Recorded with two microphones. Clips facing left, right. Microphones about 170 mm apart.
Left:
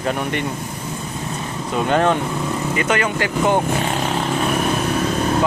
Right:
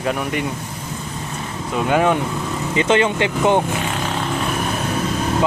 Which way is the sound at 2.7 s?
25° right (ahead or behind).